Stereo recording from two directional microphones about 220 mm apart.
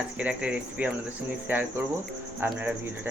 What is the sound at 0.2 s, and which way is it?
Speech, 5° right (ahead or behind).